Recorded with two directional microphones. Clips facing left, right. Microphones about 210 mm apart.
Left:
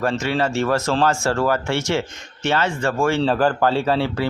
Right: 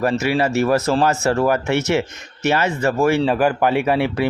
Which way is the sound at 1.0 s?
20° right (ahead or behind).